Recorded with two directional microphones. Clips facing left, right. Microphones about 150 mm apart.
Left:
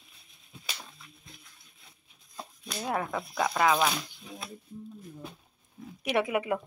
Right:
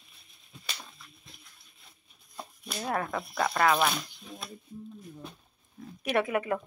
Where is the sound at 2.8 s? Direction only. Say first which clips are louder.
Even; 10° left (ahead or behind).